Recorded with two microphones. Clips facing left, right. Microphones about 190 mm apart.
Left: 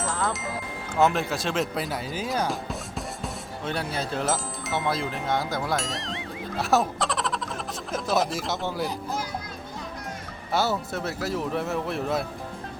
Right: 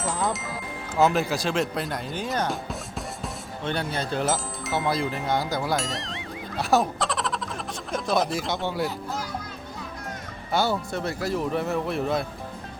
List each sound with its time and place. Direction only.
0.1 s music: 15° right (ahead or behind)
0.9 s speech: centre (ahead or behind)
10.5 s speech: centre (ahead or behind)